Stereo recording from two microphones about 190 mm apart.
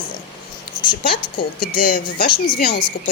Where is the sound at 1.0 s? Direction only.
50° left (ahead or behind).